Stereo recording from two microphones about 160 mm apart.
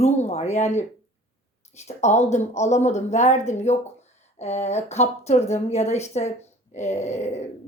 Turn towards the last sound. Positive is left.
turn(degrees=45)  # may be behind; listen again after turning